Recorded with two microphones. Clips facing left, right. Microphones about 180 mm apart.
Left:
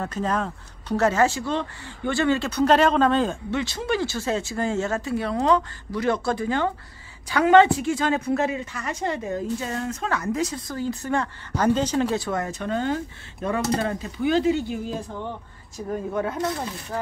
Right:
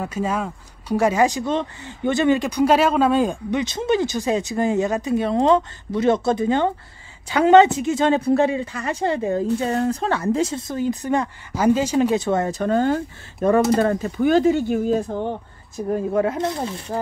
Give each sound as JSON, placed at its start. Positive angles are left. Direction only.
{"t": 0.0, "sound": "a woman's voice", "side_deg": -10}
{"t": 12.3, "sound": "speech", "side_deg": -30}
{"t": 15.9, "sound": "a woman's voice", "side_deg": -25}